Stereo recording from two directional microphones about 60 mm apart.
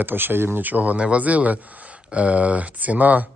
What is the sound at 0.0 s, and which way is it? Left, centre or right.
Speech, right.